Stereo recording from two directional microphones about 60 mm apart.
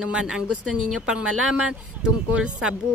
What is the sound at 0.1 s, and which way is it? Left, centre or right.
A woman's voice, centre.